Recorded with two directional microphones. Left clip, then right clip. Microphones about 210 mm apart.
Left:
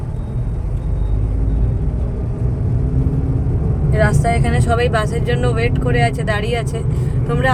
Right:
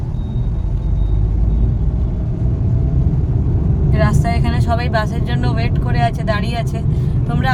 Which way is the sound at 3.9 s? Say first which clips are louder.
Left 3 dB; 5° right (ahead or behind).